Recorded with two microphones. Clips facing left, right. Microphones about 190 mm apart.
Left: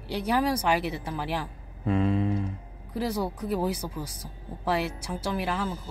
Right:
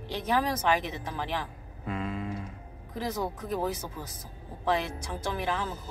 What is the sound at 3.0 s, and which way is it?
Speech, 10° left (ahead or behind).